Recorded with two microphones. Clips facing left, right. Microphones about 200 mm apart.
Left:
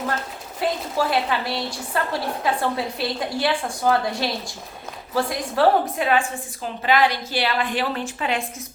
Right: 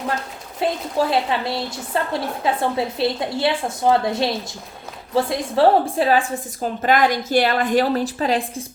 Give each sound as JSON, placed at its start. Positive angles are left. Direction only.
{"t": 0.6, "sound": "a woman's voice", "side_deg": -25}